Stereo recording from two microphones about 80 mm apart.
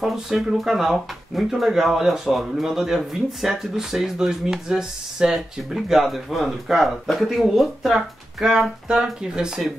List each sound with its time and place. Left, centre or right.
0.0 s speech: centre